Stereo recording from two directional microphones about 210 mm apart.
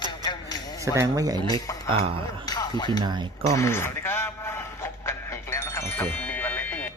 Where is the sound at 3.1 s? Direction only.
20° right (ahead or behind).